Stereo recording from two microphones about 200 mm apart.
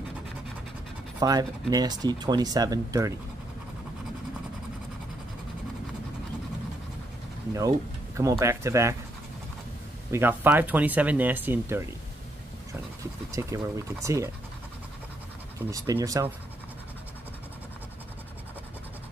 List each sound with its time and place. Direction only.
1.2 s speech: 20° right (ahead or behind)
8.2 s speech: 15° right (ahead or behind)
10.1 s speech: 10° right (ahead or behind)
13.3 s speech: 15° right (ahead or behind)
15.7 s speech: 15° right (ahead or behind)